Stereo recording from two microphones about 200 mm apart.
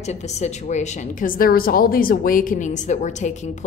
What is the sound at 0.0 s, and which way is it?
A woman's voice, 35° left (ahead or behind).